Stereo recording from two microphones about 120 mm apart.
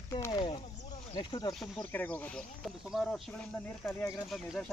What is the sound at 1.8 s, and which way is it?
Speech, 15° left (ahead or behind).